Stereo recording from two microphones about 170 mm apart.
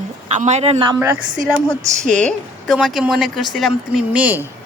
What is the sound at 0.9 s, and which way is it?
Speech, 15° right (ahead or behind).